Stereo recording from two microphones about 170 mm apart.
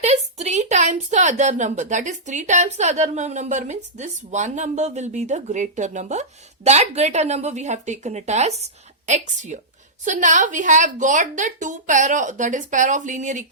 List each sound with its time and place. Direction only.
0.0 s a woman's voice: 40° right (ahead or behind)